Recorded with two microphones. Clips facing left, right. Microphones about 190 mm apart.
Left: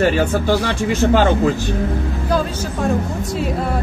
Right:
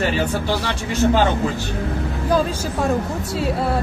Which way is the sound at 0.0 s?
45° left (ahead or behind).